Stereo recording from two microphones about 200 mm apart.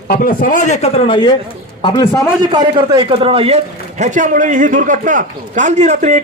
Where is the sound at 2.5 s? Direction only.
20° right (ahead or behind).